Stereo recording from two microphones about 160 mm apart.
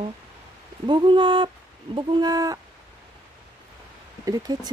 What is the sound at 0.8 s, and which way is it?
Speech, 30° right (ahead or behind).